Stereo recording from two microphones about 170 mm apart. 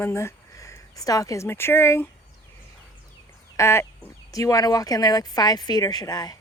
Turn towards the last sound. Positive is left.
turn(degrees=25)  # may be behind; listen again after turning